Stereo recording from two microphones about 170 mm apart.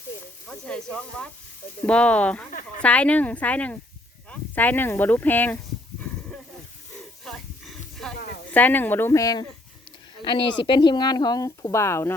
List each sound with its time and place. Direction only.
0.4 s speech: 5° left (ahead or behind)
2.5 s speech: 50° left (ahead or behind)
2.8 s speech: 10° left (ahead or behind)
7.3 s a sound: centre (ahead or behind)
8.5 s speech: 10° left (ahead or behind)
10.6 s speech: 25° left (ahead or behind)